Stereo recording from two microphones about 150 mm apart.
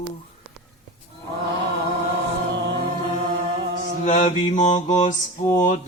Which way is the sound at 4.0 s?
55° left (ahead or behind).